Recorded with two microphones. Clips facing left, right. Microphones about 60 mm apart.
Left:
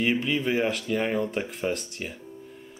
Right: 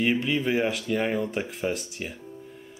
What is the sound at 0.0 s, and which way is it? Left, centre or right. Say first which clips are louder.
Speech: right 1 dB; centre.